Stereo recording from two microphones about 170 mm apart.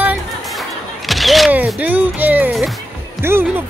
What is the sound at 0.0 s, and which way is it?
Single-lens reflex camera, 5° right (ahead or behind).